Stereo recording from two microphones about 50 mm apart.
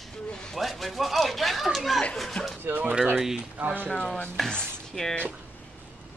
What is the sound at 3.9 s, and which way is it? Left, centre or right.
Music, centre.